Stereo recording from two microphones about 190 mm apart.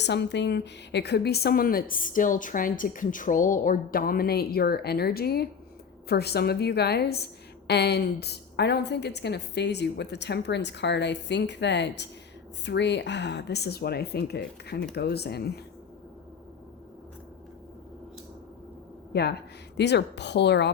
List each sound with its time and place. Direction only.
0.0 s a woman's voice: 65° left (ahead or behind)
19.1 s a woman's voice: 60° left (ahead or behind)